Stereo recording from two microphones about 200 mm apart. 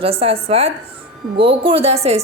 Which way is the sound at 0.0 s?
30° right (ahead or behind).